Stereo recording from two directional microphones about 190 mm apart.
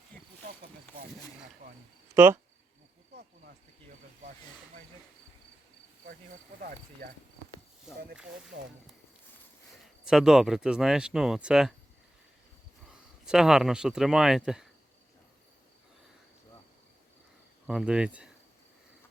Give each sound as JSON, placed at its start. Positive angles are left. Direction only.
{"t": 0.1, "sound": "cricket", "side_deg": 5}
{"t": 0.4, "sound": "a sound", "side_deg": -50}
{"t": 2.1, "sound": "speech", "side_deg": -15}
{"t": 6.6, "sound": "speech", "side_deg": -50}
{"t": 7.9, "sound": "speech", "side_deg": -5}
{"t": 10.0, "sound": "speech", "side_deg": -5}
{"t": 13.2, "sound": "speech", "side_deg": -5}
{"t": 17.7, "sound": "speech", "side_deg": -5}